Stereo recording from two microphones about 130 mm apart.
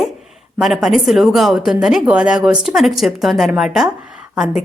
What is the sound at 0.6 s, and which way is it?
A woman's voice, centre (ahead or behind).